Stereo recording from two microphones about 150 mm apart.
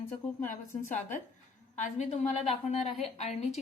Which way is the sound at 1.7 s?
50° left (ahead or behind).